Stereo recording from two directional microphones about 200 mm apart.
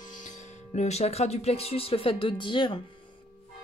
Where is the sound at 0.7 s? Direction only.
35° left (ahead or behind).